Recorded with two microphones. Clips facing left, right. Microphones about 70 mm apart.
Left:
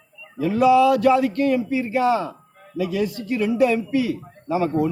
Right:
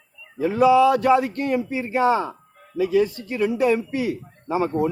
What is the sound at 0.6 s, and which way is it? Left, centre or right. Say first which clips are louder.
Speech: even; right.